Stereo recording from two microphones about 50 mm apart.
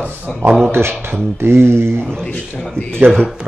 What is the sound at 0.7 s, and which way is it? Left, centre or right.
Speech, right.